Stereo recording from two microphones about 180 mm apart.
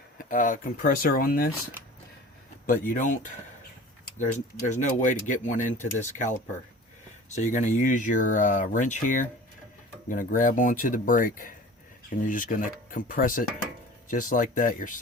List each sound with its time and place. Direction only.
0.2 s speech: 45° left (ahead or behind)
2.8 s speech: 45° left (ahead or behind)
4.2 s speech: 45° left (ahead or behind)